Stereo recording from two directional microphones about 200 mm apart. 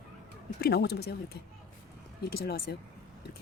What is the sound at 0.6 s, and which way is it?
Speech, 55° left (ahead or behind).